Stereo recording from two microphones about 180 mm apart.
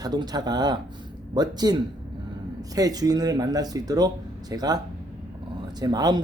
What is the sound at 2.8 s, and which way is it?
Speech, 20° right (ahead or behind).